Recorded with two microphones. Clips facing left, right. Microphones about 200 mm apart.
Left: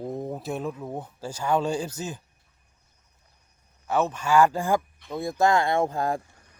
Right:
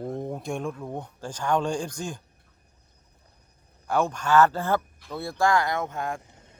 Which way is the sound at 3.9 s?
5° left (ahead or behind).